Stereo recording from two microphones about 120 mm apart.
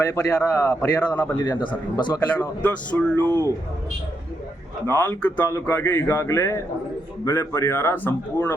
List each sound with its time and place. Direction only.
0.0 s speech: 25° left (ahead or behind)
2.6 s speech: 10° left (ahead or behind)
3.2 s speech: 25° right (ahead or behind)
4.9 s speech: 20° left (ahead or behind)